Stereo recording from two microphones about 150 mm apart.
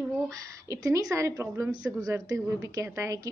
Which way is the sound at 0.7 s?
20° right (ahead or behind).